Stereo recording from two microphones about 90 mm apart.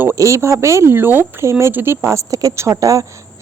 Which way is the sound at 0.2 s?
35° right (ahead or behind).